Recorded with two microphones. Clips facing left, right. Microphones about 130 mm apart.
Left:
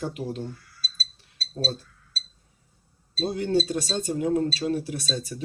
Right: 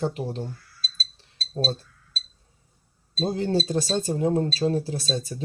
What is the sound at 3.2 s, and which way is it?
Speech, 30° right (ahead or behind).